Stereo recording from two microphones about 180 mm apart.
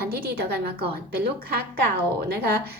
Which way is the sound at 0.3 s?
60° right (ahead or behind).